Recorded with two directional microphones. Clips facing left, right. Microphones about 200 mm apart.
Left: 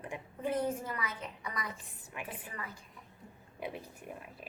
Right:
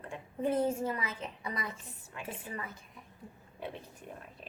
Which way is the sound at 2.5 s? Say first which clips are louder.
Right 3 dB; 25° right (ahead or behind).